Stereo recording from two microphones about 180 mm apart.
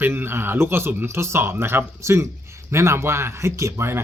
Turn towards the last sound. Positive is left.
turn(degrees=-15)  # may be behind; listen again after turning